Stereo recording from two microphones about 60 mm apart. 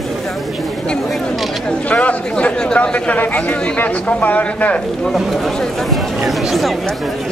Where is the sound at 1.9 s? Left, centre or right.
Left.